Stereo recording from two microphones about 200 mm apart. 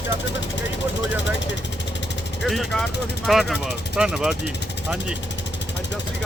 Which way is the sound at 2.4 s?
Centre (ahead or behind).